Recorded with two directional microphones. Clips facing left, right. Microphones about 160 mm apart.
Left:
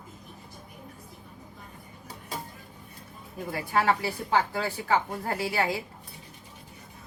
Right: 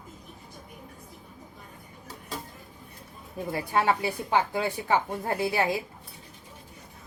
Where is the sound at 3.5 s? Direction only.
25° right (ahead or behind).